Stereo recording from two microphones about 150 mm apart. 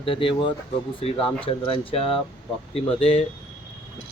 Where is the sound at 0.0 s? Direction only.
35° left (ahead or behind).